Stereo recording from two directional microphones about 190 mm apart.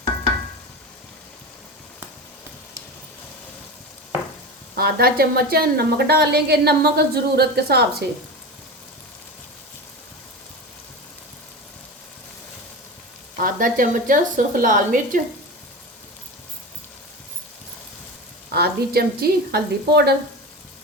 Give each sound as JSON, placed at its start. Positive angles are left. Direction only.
{"t": 4.8, "sound": "a woman's voice", "side_deg": -55}
{"t": 13.3, "sound": "a woman's voice", "side_deg": -45}
{"t": 18.5, "sound": "a woman's voice", "side_deg": -55}